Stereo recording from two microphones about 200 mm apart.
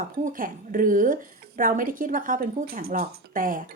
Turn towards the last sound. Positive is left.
turn(degrees=-40)  # may be behind; listen again after turning